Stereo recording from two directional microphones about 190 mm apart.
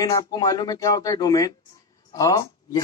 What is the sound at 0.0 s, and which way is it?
Speech, 20° left (ahead or behind).